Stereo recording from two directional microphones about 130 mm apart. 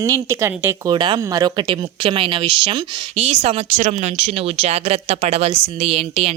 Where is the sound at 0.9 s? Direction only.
35° right (ahead or behind).